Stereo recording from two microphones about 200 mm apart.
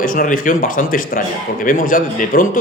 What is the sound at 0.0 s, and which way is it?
A man's voice, 45° left (ahead or behind).